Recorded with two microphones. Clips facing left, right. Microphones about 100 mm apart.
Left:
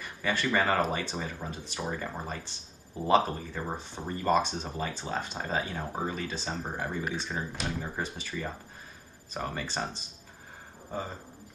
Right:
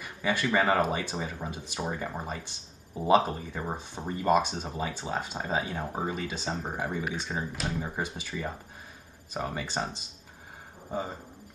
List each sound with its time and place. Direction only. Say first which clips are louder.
0.0 s speech: right 1 dB; 15° right (ahead or behind)